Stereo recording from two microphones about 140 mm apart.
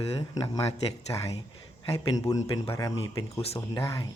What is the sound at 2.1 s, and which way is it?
Speech, 25° left (ahead or behind).